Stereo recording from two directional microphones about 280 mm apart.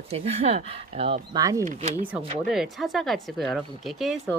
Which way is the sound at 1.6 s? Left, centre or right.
Right.